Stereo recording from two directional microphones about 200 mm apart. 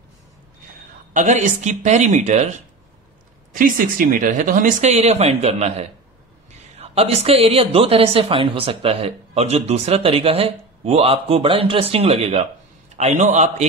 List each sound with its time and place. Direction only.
1.1 s speech: 35° right (ahead or behind)